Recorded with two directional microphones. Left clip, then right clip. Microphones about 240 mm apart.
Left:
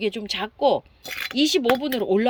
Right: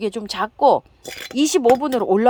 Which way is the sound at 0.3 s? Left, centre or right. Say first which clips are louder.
Right 6 dB; centre.